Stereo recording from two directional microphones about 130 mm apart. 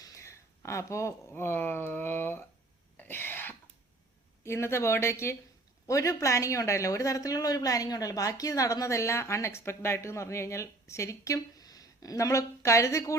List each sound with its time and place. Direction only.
0.0 s speech: 25° left (ahead or behind)
3.0 s cough: 15° left (ahead or behind)
4.4 s a woman's voice: 20° left (ahead or behind)